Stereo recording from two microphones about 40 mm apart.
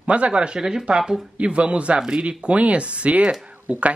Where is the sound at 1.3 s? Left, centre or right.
Right.